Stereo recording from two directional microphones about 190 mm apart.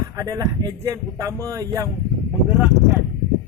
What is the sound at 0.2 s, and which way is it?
Speech, 20° right (ahead or behind).